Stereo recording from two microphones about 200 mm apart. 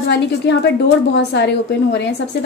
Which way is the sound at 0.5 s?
60° left (ahead or behind).